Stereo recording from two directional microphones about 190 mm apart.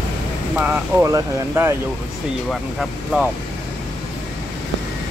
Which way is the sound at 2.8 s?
Centre (ahead or behind).